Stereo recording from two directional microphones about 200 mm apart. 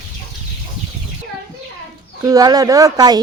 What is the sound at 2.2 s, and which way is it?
Speech, 20° right (ahead or behind).